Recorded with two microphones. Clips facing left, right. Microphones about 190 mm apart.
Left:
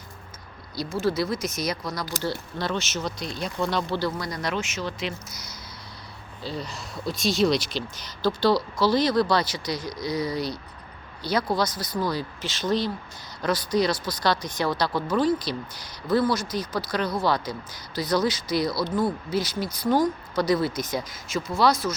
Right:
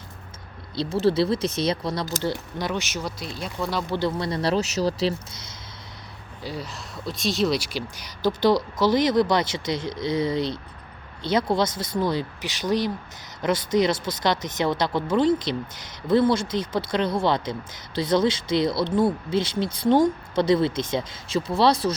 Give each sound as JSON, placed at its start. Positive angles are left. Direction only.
{"t": 0.8, "sound": "speech", "side_deg": -35}
{"t": 2.1, "sound": "speech", "side_deg": -20}
{"t": 3.9, "sound": "speech", "side_deg": -25}
{"t": 6.4, "sound": "speech", "side_deg": -10}